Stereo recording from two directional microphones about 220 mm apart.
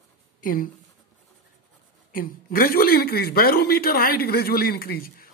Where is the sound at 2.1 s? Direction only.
40° left (ahead or behind).